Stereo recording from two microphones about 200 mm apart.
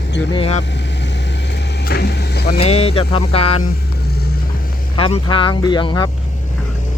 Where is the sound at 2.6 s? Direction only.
30° left (ahead or behind).